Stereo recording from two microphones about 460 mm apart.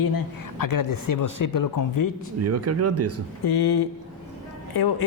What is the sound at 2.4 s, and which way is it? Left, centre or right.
Speech, right.